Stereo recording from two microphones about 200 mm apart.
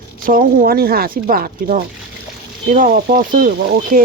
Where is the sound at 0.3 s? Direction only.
45° right (ahead or behind).